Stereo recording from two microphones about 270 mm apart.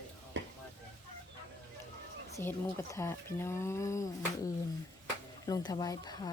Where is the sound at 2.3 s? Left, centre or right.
Centre.